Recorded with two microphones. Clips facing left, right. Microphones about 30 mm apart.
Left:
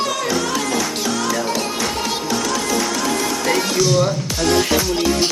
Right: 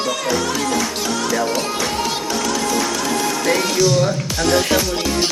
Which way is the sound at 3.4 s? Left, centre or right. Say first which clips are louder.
Right 1 dB; centre.